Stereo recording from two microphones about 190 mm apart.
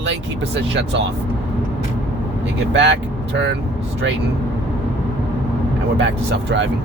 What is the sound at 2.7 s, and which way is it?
Speech, 65° right (ahead or behind).